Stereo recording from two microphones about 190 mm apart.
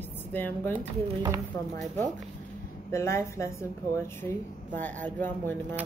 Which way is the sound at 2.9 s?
15° left (ahead or behind).